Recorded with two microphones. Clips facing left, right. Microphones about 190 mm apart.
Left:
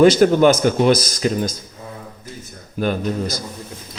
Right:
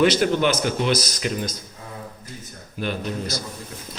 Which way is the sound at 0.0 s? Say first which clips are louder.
Left 7 dB; 45° left (ahead or behind).